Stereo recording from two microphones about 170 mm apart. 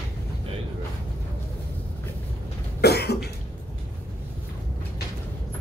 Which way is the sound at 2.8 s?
75° left (ahead or behind).